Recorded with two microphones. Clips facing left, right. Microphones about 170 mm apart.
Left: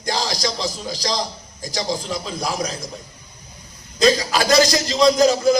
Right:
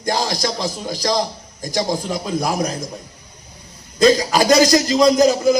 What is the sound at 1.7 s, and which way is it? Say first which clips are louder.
A man's voice: right 4 dB; 50° right (ahead or behind).